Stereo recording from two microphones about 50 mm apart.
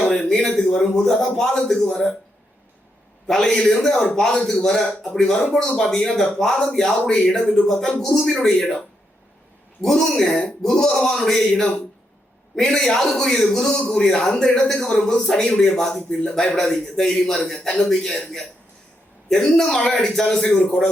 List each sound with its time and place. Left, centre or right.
0.0 s a man's voice: centre
3.2 s speech: centre
9.8 s speech: centre
20.2 s speech: left
20.5 s speech: centre